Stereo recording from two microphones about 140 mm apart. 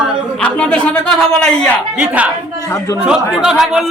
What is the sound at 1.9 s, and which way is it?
A man's voice, 10° right (ahead or behind).